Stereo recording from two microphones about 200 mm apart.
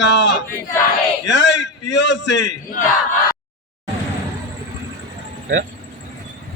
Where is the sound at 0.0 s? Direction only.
65° left (ahead or behind).